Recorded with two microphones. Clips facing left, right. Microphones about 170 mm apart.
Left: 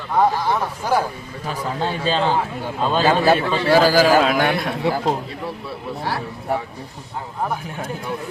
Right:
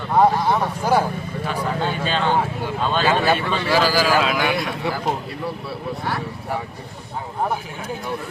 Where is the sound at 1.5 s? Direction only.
35° left (ahead or behind).